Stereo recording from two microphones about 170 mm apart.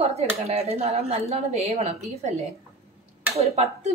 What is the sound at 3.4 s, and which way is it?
Speech, 40° right (ahead or behind).